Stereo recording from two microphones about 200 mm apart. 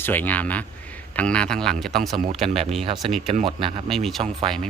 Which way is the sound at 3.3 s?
25° right (ahead or behind).